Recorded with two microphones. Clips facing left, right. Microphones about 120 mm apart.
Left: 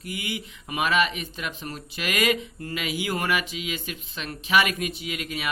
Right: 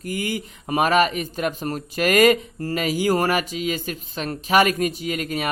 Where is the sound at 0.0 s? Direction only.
45° right (ahead or behind).